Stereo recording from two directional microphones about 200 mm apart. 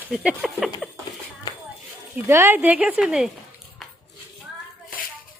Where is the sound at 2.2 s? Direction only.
10° right (ahead or behind).